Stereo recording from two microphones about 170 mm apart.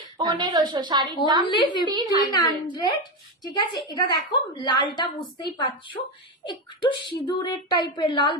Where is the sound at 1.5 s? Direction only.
25° left (ahead or behind).